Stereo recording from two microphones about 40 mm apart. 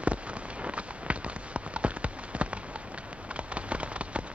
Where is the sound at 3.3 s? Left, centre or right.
Right.